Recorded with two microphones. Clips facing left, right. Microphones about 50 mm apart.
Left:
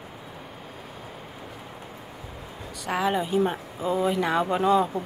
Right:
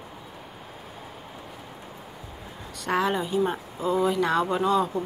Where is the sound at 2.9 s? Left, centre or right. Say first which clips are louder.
Even; centre.